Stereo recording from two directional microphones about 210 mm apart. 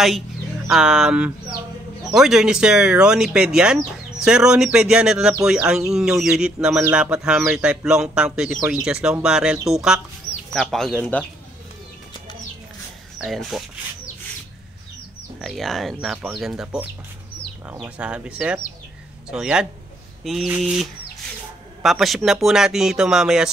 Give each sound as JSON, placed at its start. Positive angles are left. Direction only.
{"t": 0.7, "sound": "speech", "side_deg": -5}
{"t": 13.2, "sound": "speech", "side_deg": 0}
{"t": 15.4, "sound": "speech", "side_deg": 0}